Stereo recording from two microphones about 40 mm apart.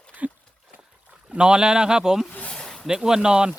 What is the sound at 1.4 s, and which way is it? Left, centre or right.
Speech, centre.